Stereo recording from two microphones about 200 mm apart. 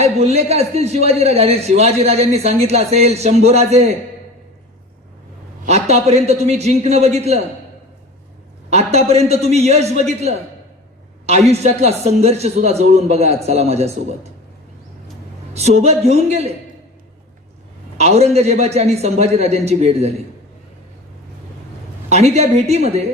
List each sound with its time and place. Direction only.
0.0 s a man's voice: 30° right (ahead or behind)
5.6 s a man's voice: 35° right (ahead or behind)
8.7 s a man's voice: 30° right (ahead or behind)
15.5 s a man's voice: 30° right (ahead or behind)
17.9 s a man's voice: 30° right (ahead or behind)
22.1 s a man's voice: 30° right (ahead or behind)